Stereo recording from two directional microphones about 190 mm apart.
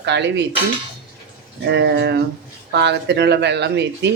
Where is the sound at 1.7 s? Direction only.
60° right (ahead or behind).